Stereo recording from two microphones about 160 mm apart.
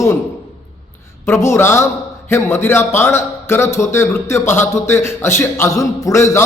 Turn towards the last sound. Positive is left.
turn(degrees=20)  # may be behind; listen again after turning